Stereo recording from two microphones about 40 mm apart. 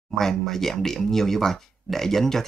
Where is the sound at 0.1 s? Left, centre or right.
Centre.